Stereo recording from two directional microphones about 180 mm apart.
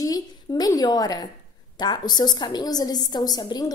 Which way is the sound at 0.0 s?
20° left (ahead or behind).